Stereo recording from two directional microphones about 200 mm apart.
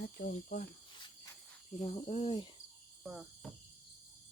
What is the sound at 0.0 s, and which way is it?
Cricket, 50° left (ahead or behind).